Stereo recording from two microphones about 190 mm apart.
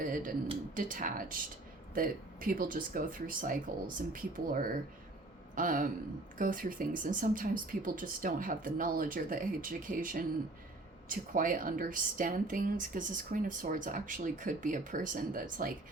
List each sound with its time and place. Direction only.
0.0 s speech: 45° right (ahead or behind)